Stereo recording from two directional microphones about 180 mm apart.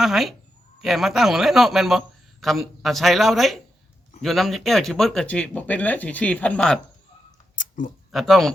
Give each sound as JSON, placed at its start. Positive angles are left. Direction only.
{"t": 0.0, "sound": "a man's voice", "side_deg": 0}
{"t": 7.5, "sound": "a sound", "side_deg": 45}
{"t": 8.1, "sound": "a man's voice", "side_deg": 0}